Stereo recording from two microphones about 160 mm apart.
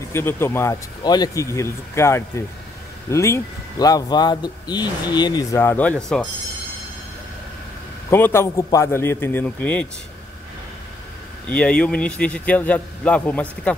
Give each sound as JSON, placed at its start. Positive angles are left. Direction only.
{"t": 0.1, "sound": "a man's voice", "side_deg": 15}
{"t": 8.1, "sound": "speech", "side_deg": 15}
{"t": 11.4, "sound": "speech", "side_deg": 5}